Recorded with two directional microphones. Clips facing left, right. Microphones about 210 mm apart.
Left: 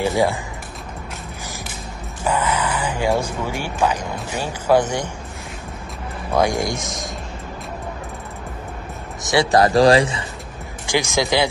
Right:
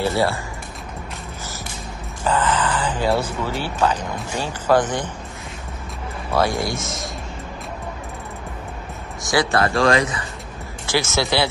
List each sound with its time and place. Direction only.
0.0 s speech: 15° left (ahead or behind)
2.2 s speech: 10° left (ahead or behind)
6.3 s speech: 15° left (ahead or behind)
9.5 s speech: 35° left (ahead or behind)
10.9 s speech: 15° left (ahead or behind)